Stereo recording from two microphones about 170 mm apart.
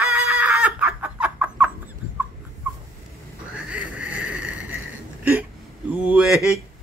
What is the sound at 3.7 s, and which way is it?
Vehicle, 10° right (ahead or behind).